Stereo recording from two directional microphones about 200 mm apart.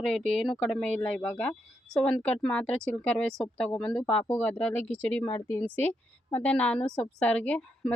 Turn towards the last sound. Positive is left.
turn(degrees=5)  # may be behind; listen again after turning